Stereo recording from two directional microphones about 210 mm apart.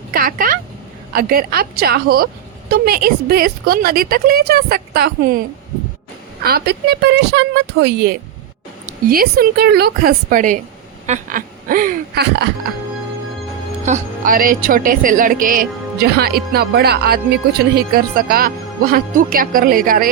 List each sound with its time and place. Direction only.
0.1 s a woman's voice: 45° right (ahead or behind)
6.4 s a woman's voice: 50° right (ahead or behind)
13.8 s a woman's voice: 40° right (ahead or behind)